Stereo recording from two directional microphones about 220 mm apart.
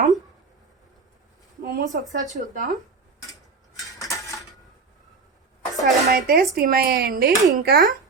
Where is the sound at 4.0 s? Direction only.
15° left (ahead or behind).